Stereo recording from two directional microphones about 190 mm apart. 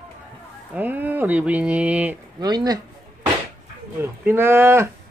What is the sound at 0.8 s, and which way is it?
Speech, 10° right (ahead or behind).